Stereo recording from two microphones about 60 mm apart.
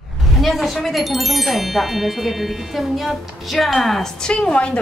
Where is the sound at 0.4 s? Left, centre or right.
Centre.